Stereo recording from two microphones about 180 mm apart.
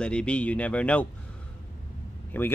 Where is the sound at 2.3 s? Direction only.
10° left (ahead or behind).